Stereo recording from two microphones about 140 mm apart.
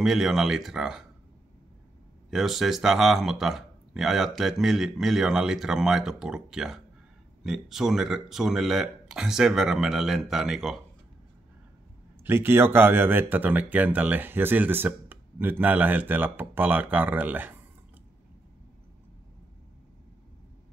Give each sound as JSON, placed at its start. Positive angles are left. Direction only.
{"t": 0.0, "sound": "speech", "side_deg": 0}
{"t": 2.3, "sound": "speech", "side_deg": 0}
{"t": 12.2, "sound": "speech", "side_deg": -15}